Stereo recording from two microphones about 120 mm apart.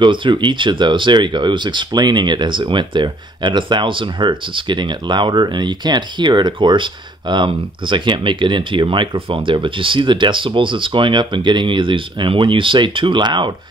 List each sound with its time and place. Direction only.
0.0 s speech: 40° right (ahead or behind)